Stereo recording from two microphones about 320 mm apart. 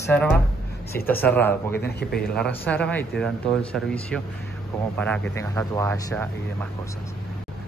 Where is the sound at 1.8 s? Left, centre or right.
Left.